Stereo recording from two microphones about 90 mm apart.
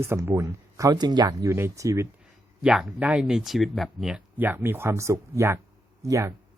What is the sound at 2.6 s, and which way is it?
Speech, 5° right (ahead or behind).